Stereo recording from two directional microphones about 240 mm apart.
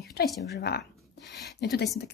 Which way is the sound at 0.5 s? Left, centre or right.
Left.